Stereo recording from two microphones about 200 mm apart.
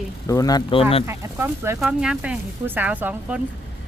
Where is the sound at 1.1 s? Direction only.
10° right (ahead or behind).